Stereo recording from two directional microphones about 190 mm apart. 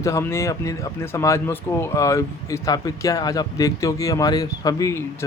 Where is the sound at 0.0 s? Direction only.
15° left (ahead or behind).